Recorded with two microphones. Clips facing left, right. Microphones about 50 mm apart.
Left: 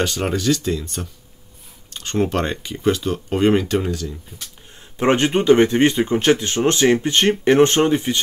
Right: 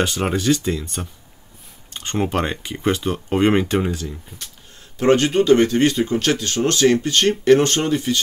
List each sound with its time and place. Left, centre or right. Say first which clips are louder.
0.0 s speech: even; centre
4.9 s speech: right 1 dB; left